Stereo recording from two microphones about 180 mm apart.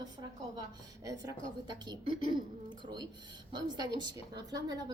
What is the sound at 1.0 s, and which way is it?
A woman's voice, 20° right (ahead or behind).